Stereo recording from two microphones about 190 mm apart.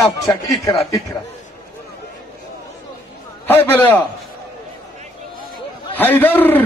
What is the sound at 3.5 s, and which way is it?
Speech, 10° left (ahead or behind).